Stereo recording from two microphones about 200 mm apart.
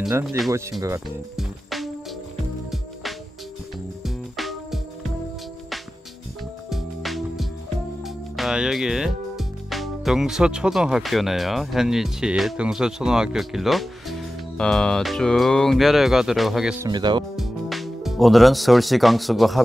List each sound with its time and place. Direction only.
0.0 s speech: 5° right (ahead or behind)
0.5 s speech: 15° right (ahead or behind)
1.3 s music: centre (ahead or behind)
6.7 s music: centre (ahead or behind)
8.0 s speech: centre (ahead or behind)
16.8 s speech: 20° right (ahead or behind)
17.4 s speech: centre (ahead or behind)